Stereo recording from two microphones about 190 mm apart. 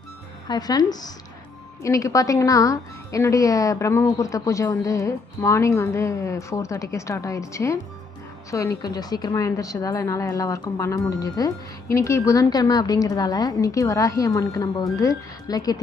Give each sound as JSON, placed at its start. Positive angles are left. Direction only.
{"t": 0.4, "sound": "a woman's voice", "side_deg": 20}